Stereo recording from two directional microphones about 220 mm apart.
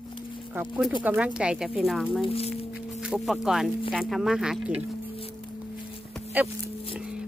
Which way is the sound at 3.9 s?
Centre (ahead or behind).